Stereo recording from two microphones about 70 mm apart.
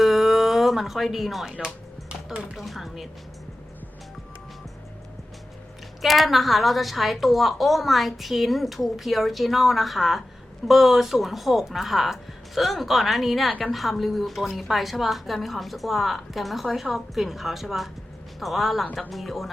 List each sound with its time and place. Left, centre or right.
0.0 s a sound: centre
1.5 s music: centre
2.6 s a woman's voice: centre
6.0 s a woman's voice: centre